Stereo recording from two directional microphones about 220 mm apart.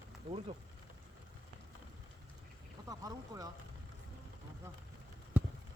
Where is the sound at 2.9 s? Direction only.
15° right (ahead or behind).